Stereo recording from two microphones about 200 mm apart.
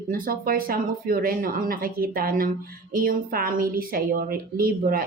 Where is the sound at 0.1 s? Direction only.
45° right (ahead or behind).